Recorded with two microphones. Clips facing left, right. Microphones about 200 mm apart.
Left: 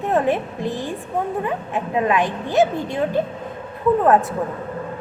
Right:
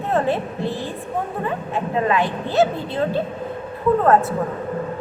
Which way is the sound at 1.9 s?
15° left (ahead or behind).